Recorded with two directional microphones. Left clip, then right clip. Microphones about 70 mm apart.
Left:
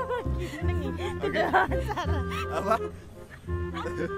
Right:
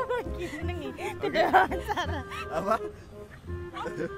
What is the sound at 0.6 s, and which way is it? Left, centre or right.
Speech, centre.